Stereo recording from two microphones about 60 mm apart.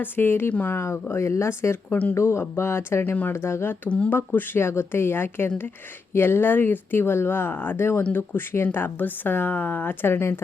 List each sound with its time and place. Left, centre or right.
0.0 s speech: left
1.0 s speech: left
3.8 s speech: left
4.1 s speech: left